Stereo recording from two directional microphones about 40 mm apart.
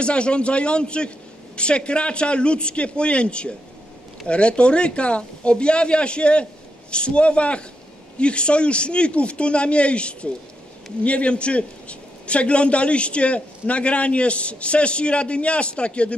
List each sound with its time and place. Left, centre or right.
0.0 s a man's voice: left